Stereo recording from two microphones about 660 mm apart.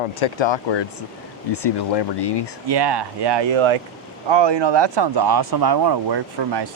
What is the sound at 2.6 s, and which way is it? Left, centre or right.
Speech, right.